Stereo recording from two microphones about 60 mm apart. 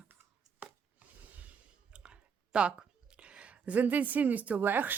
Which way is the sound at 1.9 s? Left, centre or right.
Centre.